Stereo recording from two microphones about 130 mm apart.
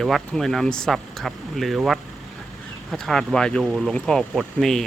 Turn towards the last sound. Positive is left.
turn(degrees=5)  # may be behind; listen again after turning